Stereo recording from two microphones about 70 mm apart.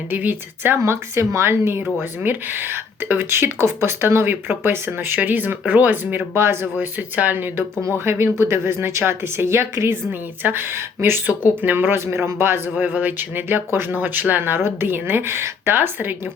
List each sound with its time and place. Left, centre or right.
0.1 s speech: right
0.8 s speech: right
11.3 s speech: right